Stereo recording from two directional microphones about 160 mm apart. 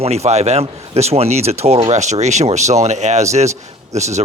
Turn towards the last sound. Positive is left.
turn(degrees=-45)  # may be behind; listen again after turning